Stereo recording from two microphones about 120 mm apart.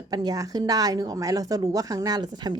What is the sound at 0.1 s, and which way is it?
A woman's voice, 35° right (ahead or behind).